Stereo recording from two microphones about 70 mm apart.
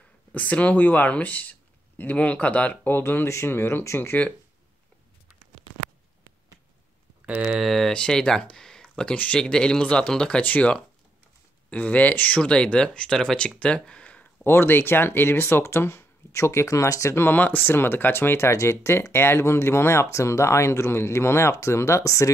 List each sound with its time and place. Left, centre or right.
0.3 s speech: left
7.2 s speech: centre
7.5 s speech: centre
7.9 s speech: centre
13.6 s a sound: centre
14.4 s speech: left